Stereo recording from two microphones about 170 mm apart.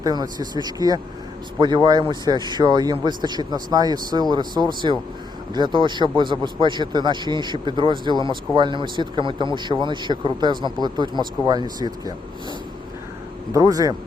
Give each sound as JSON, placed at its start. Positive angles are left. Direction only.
{"t": 0.0, "sound": "speech", "side_deg": -25}